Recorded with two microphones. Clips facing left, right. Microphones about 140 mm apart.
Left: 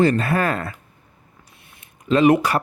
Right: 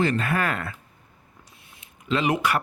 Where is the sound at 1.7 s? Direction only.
50° left (ahead or behind).